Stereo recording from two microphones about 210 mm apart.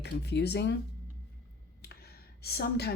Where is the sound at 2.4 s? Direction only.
50° left (ahead or behind).